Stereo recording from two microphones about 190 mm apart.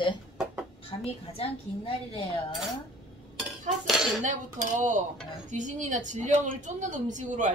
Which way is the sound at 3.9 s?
Centre (ahead or behind).